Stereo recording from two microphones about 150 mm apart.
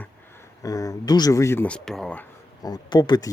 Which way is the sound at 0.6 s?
25° left (ahead or behind).